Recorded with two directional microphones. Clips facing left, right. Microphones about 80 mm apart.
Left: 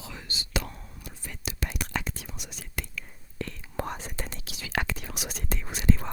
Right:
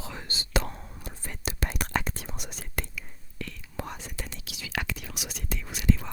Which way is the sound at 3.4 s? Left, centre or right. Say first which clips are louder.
Left 4 dB; left.